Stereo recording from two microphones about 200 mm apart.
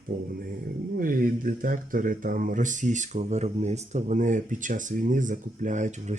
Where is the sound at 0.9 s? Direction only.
45° right (ahead or behind).